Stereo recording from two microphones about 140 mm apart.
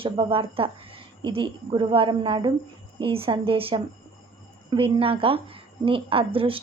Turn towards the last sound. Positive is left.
turn(degrees=-40)  # may be behind; listen again after turning